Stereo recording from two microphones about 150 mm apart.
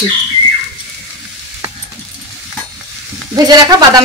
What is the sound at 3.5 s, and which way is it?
Speech, 25° right (ahead or behind).